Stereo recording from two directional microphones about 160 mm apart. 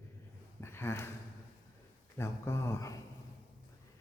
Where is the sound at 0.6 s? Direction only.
15° left (ahead or behind).